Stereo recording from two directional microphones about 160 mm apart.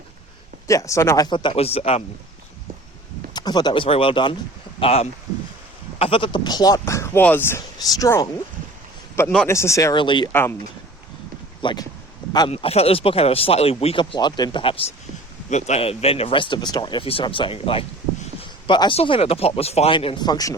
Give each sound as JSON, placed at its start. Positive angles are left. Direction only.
{"t": 0.7, "sound": "speech", "side_deg": 20}
{"t": 3.3, "sound": "speech", "side_deg": 25}
{"t": 9.5, "sound": "speech", "side_deg": 20}
{"t": 11.6, "sound": "speech", "side_deg": 30}
{"t": 12.5, "sound": "speech", "side_deg": 40}